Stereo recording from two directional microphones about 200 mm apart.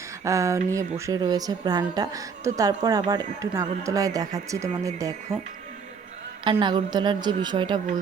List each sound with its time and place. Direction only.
0.3 s a woman's voice: 15° right (ahead or behind)
6.4 s a woman's voice: 25° right (ahead or behind)